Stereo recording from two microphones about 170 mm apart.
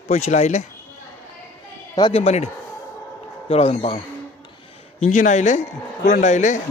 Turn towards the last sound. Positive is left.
turn(degrees=45)  # may be behind; listen again after turning